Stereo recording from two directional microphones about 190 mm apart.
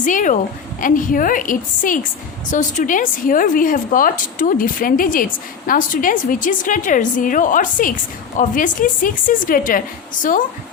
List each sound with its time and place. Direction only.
0.0 s a woman's voice: 45° left (ahead or behind)